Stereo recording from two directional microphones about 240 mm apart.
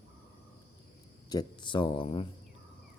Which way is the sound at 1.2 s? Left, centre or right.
Centre.